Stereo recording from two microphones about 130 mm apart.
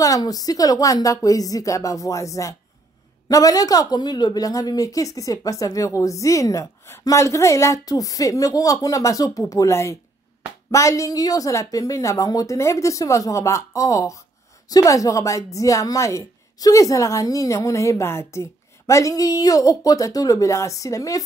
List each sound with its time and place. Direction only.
0.0 s a woman's voice: 25° left (ahead or behind)